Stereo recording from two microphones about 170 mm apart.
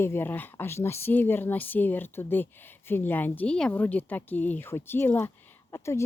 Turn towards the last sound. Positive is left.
turn(degrees=15)  # may be behind; listen again after turning